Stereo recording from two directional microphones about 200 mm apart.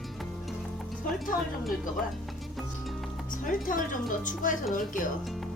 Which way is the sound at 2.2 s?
Centre (ahead or behind).